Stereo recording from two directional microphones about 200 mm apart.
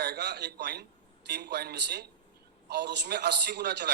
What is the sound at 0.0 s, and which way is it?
A man's voice, 55° right (ahead or behind).